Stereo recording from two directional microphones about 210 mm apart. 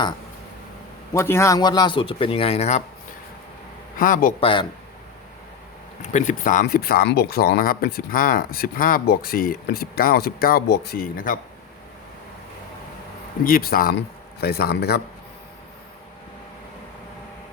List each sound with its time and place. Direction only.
1.1 s a man's voice: 15° left (ahead or behind); by 2.8 s 30° left (ahead or behind)
3.9 s a man's voice: 40° left (ahead or behind)
4.4 s a man's voice: 25° left (ahead or behind)
6.0 s speech: 35° left (ahead or behind)
13.4 s speech: 45° left (ahead or behind)